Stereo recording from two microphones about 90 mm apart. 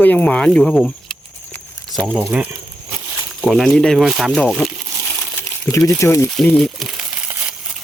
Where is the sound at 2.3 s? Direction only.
15° right (ahead or behind).